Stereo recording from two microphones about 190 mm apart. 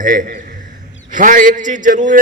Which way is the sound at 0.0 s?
45° right (ahead or behind).